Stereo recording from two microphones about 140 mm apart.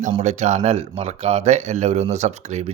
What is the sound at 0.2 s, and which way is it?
Speech, 55° right (ahead or behind).